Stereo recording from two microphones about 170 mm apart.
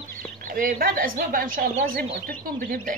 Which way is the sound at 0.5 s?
55° right (ahead or behind).